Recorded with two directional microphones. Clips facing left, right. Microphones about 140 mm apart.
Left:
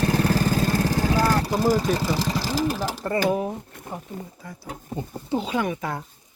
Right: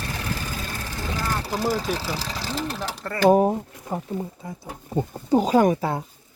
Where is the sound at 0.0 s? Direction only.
45° left (ahead or behind).